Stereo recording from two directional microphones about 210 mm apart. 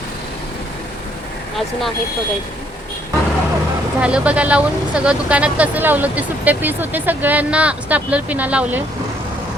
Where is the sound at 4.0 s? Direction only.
5° right (ahead or behind).